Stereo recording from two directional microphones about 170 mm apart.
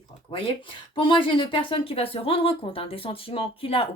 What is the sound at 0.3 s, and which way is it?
A woman's voice, 30° left (ahead or behind).